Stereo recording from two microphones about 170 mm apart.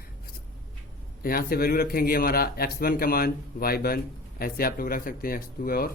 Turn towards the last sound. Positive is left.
turn(degrees=60)  # may be behind; listen again after turning